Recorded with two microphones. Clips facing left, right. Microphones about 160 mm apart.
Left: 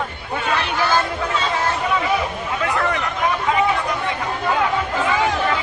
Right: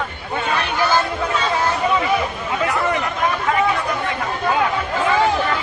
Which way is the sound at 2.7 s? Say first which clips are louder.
Even; centre (ahead or behind).